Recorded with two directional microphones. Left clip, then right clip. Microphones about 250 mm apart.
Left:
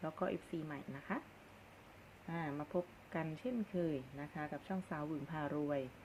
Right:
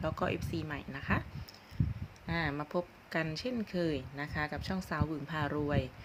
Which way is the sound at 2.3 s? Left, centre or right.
Right.